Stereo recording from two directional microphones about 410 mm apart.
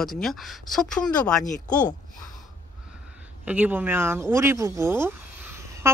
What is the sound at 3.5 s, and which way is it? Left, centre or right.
Speech, centre.